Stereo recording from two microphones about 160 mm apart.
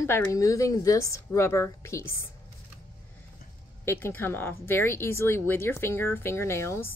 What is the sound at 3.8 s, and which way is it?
Speech, 15° left (ahead or behind).